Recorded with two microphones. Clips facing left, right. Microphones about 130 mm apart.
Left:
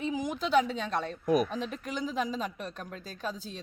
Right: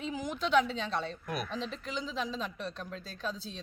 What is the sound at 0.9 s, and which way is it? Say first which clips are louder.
Speech: left 7 dB; 50° left (ahead or behind).